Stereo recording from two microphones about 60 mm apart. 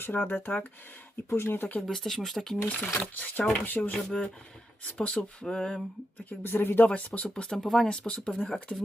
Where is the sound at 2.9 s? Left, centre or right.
Left.